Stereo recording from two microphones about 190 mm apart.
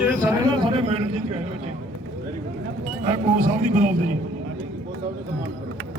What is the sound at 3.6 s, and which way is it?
Speech, 40° right (ahead or behind).